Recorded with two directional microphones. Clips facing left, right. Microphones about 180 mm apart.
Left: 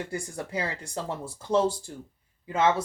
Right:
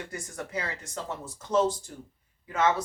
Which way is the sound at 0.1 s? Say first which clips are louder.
Left 3 dB; 30° left (ahead or behind).